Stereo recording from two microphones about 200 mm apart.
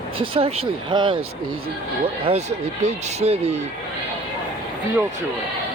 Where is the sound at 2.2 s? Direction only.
30° right (ahead or behind).